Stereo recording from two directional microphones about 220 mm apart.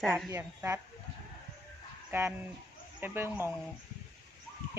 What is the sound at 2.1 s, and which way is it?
Speech, 10° right (ahead or behind).